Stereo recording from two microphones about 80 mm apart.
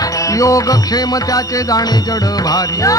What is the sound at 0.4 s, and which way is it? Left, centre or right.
Music, left.